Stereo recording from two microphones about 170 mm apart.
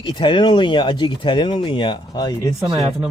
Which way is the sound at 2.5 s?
Centre (ahead or behind).